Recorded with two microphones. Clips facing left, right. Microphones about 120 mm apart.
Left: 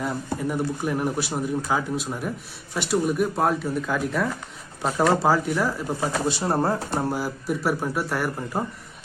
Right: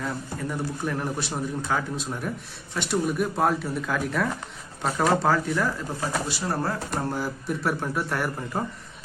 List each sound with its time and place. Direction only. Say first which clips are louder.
0.0 s speech: left 4 dB; 10° left (ahead or behind)
6.2 s speech: left 5 dB; 30° left (ahead or behind)
7.0 s speech: left 2 dB; 10° left (ahead or behind)